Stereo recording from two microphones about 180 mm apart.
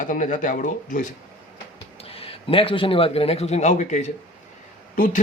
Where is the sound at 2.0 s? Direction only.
30° left (ahead or behind); by 5.2 s 50° left (ahead or behind).